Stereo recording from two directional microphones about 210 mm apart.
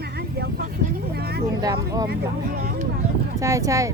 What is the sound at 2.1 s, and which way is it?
Speech, 45° right (ahead or behind).